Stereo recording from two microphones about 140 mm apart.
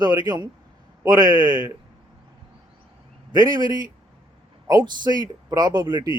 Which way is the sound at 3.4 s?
30° right (ahead or behind).